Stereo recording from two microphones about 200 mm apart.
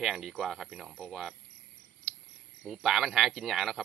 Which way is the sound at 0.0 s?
Centre (ahead or behind).